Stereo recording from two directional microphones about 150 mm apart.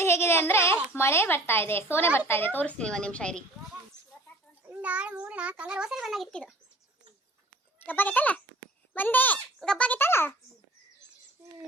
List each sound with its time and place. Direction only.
0.0 s a sound: 15° left (ahead or behind)
0.9 s a woman's voice: 15° left (ahead or behind)
4.6 s a child's voice: 10° right (ahead or behind)
7.9 s a woman's voice: 10° left (ahead or behind)